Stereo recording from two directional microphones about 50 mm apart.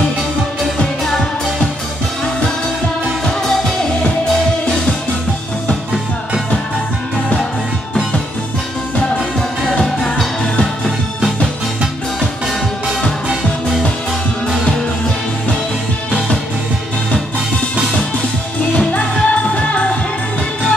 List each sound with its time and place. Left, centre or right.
9.8 s music: centre
18.7 s music: left